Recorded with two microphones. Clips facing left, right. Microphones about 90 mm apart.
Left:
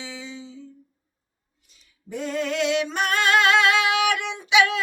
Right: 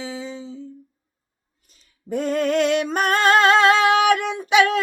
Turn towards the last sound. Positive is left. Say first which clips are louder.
# right 3 dB
turn(degrees=-45)  # may be behind; listen again after turning